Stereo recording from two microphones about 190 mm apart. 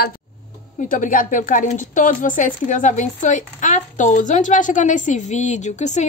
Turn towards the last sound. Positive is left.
turn(degrees=40)  # may be behind; listen again after turning